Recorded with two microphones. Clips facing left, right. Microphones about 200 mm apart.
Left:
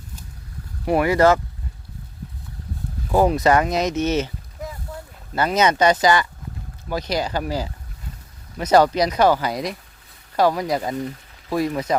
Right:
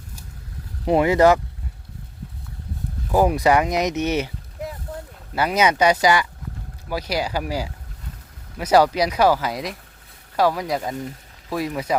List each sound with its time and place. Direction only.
0.9 s speech: 20° right (ahead or behind)
3.1 s speech: 10° right (ahead or behind)
5.3 s speech: 10° right (ahead or behind)